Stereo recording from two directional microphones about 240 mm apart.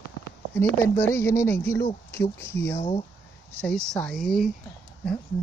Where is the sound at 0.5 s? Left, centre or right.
Centre.